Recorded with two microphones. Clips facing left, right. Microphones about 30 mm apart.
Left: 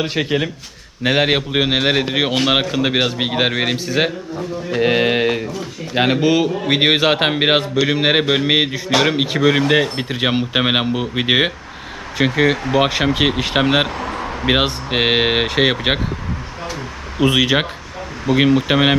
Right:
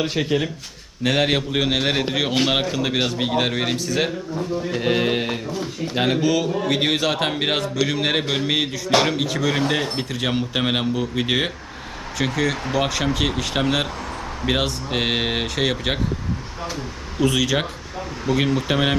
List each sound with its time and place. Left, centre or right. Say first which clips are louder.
0.0 s speech: left 2 dB; centre
17.2 s speech: left 5 dB; left